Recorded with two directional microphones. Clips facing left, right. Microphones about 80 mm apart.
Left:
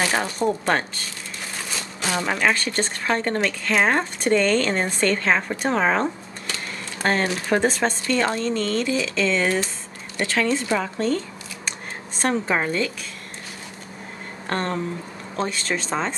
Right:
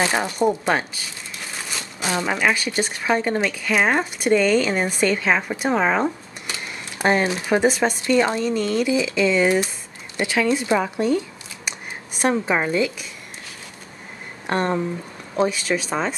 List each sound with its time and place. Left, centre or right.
0.0 s speech: centre
14.5 s speech: centre